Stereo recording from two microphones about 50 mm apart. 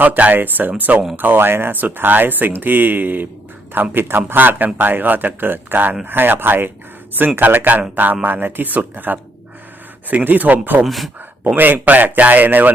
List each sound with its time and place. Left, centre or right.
0.0 s speech: right
10.8 s speech: centre
11.4 s speech: right